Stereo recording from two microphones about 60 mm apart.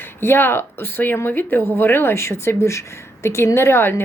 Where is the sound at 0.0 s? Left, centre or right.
Left.